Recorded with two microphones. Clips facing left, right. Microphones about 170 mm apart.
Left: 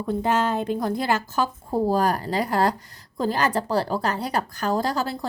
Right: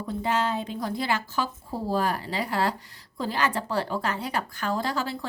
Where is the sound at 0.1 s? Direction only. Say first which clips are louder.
Left 4 dB; 50° left (ahead or behind).